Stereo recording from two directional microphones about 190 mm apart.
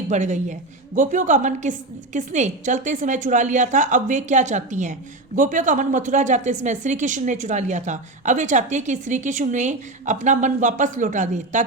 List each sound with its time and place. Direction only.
0.1 s a woman's voice: 40° right (ahead or behind)